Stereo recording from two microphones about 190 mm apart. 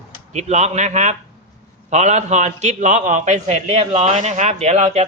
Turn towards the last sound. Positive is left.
turn(degrees=-35)  # may be behind; listen again after turning